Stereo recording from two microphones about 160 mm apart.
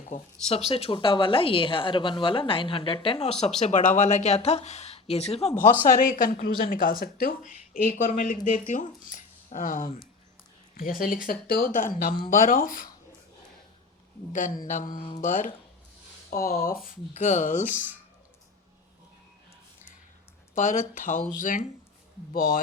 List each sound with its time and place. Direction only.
0.0 s speech: 45° left (ahead or behind)
5.8 s a woman's voice: 55° left (ahead or behind)
14.3 s a woman's voice: 55° left (ahead or behind)
16.3 s a woman's voice: 65° left (ahead or behind)
20.6 s a woman's voice: 55° left (ahead or behind)